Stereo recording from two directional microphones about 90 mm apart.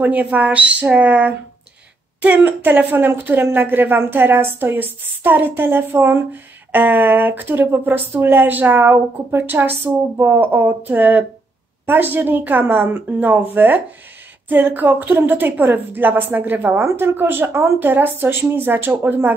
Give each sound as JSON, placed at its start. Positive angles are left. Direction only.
{"t": 0.0, "sound": "a woman's voice", "side_deg": -20}